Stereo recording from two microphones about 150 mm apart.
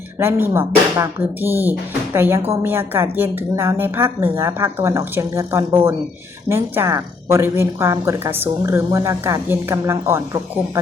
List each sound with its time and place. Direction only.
0.2 s a woman's voice: 15° right (ahead or behind)